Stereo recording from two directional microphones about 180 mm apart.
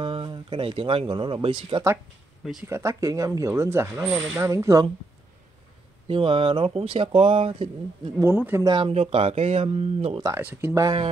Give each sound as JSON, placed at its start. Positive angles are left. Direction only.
{"t": 0.0, "sound": "speech", "side_deg": -25}
{"t": 2.7, "sound": "speech", "side_deg": -15}
{"t": 6.0, "sound": "speech", "side_deg": -30}
{"t": 8.2, "sound": "speech", "side_deg": -10}
{"t": 8.6, "sound": "speech", "side_deg": -25}
{"t": 10.2, "sound": "speech", "side_deg": -15}